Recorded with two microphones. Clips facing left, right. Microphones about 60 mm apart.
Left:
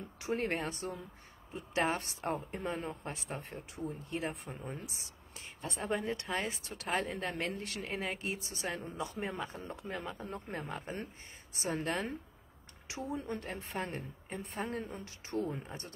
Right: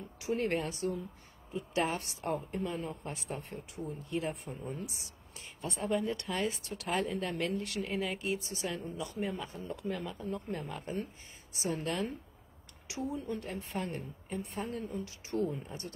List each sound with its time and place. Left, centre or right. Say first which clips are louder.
0.2 s speech: right 2 dB; left
10.1 s speech: right 3 dB; left